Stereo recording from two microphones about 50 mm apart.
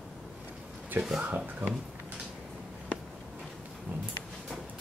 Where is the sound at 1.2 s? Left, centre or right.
Right.